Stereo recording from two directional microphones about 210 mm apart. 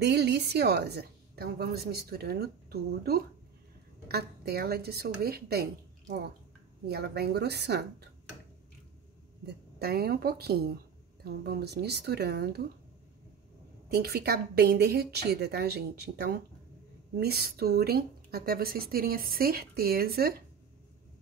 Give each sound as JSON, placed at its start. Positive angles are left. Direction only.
{"t": 0.0, "sound": "speech", "side_deg": -50}
{"t": 9.5, "sound": "speech", "side_deg": -50}
{"t": 13.8, "sound": "speech", "side_deg": -50}